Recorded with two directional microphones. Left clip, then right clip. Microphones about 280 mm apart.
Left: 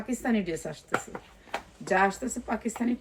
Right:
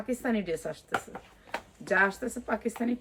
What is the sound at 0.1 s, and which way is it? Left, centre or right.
Speech, centre.